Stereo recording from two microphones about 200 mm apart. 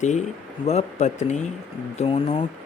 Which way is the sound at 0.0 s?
35° left (ahead or behind).